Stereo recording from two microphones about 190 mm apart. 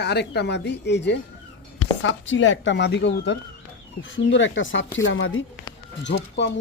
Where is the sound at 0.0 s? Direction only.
60° left (ahead or behind).